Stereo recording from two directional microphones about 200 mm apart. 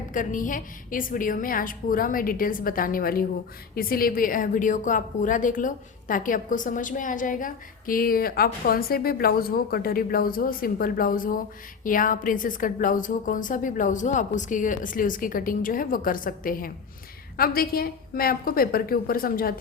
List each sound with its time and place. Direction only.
0.1 s a woman's voice: 40° left (ahead or behind)